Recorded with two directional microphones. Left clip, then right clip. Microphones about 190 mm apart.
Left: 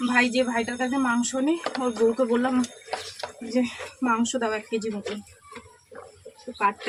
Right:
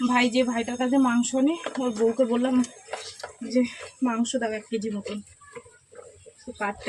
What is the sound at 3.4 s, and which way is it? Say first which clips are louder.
Speech: right 1 dB; centre (ahead or behind).